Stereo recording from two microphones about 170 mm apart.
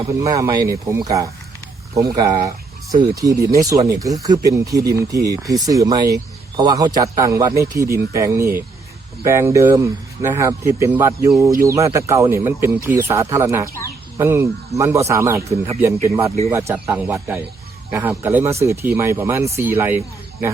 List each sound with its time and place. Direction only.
0.2 s speech: 20° right (ahead or behind)